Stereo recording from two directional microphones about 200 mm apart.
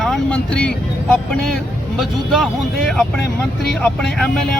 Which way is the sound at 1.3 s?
Centre (ahead or behind).